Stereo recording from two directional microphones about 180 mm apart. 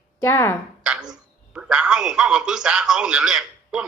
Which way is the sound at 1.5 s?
5° right (ahead or behind).